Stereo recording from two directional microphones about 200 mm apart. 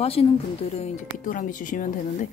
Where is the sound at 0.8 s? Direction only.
40° left (ahead or behind).